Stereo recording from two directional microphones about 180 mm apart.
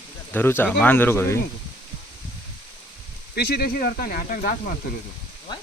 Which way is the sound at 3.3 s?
60° left (ahead or behind).